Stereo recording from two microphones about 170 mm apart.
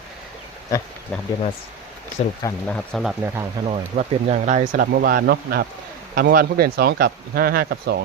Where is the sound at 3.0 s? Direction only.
10° right (ahead or behind).